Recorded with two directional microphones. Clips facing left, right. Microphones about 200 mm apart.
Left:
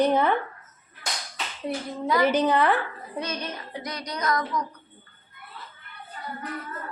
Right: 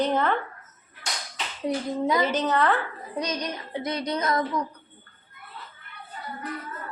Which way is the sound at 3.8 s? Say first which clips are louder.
Right 5 dB; 25° right (ahead or behind).